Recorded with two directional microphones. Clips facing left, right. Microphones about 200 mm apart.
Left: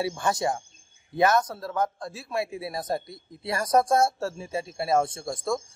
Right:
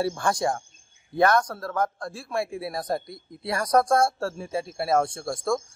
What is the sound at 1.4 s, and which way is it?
A man's voice, 25° left (ahead or behind).